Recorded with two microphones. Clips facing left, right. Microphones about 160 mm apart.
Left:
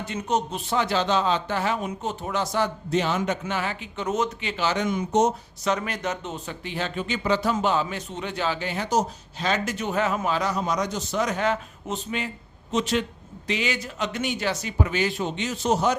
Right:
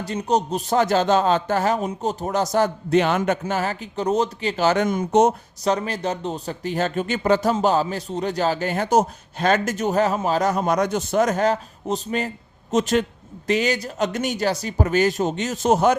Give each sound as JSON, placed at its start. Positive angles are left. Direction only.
{"t": 0.0, "sound": "a man's voice", "side_deg": -35}
{"t": 3.4, "sound": "speech", "side_deg": -40}
{"t": 5.6, "sound": "a man's voice", "side_deg": -35}